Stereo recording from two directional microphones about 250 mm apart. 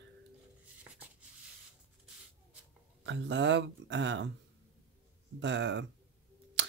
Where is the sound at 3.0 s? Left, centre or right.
Right.